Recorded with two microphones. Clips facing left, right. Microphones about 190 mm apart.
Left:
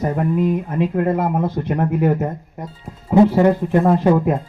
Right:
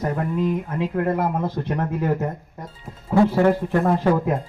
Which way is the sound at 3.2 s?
20° left (ahead or behind).